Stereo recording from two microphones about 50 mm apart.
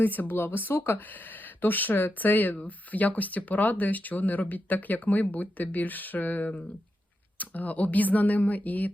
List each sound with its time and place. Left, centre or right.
0.0 s speech: left